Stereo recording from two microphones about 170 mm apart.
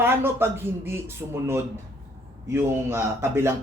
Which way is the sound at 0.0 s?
15° right (ahead or behind).